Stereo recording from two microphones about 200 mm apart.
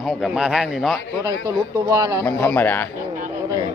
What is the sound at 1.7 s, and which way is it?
Speech, 15° right (ahead or behind).